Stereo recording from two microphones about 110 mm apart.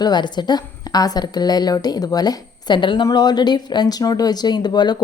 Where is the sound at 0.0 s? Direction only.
40° left (ahead or behind).